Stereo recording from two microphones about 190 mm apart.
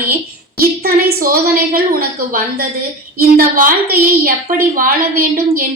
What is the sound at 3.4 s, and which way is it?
Speech, 50° right (ahead or behind).